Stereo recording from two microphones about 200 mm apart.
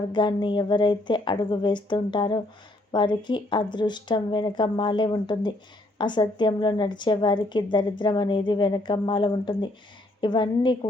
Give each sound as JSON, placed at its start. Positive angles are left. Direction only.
{"t": 0.1, "sound": "a woman's voice", "side_deg": 20}